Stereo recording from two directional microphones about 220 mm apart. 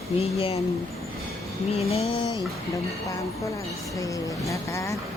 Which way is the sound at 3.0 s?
15° left (ahead or behind).